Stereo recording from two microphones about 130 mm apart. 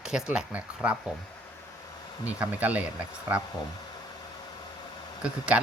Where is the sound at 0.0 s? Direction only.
5° right (ahead or behind).